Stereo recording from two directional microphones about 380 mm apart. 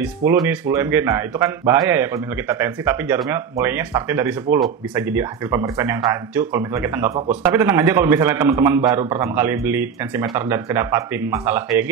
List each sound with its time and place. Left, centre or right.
0.0 s speech: centre